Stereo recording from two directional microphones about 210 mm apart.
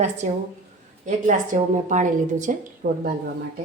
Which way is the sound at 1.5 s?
40° right (ahead or behind).